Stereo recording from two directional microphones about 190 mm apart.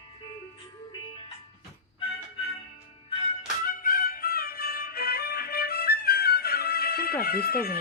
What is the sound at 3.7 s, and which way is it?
Music, 45° left (ahead or behind).